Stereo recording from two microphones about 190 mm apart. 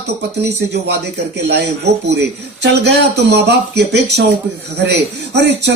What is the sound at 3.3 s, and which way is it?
Speech, 60° right (ahead or behind).